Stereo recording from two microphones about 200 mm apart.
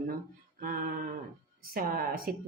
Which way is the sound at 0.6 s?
45° right (ahead or behind).